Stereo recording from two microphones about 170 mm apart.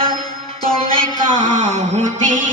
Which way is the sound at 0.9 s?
50° right (ahead or behind).